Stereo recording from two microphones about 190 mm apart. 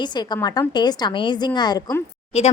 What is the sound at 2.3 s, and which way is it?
Speech, 35° left (ahead or behind).